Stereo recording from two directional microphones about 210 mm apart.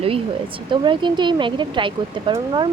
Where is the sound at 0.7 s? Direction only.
20° right (ahead or behind).